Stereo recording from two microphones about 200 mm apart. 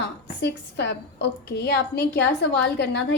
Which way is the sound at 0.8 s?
55° left (ahead or behind).